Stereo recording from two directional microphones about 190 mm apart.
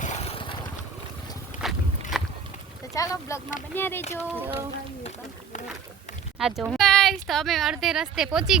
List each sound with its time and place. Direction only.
0.0 s vehicle: 35° left (ahead or behind)
1.6 s walk: centre (ahead or behind)
2.1 s a sound: centre (ahead or behind)
2.9 s speech: 15° left (ahead or behind)
4.4 s speech: 10° right (ahead or behind)
6.4 s speech: centre (ahead or behind)